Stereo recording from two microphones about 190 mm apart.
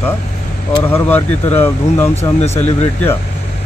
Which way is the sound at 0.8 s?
10° left (ahead or behind).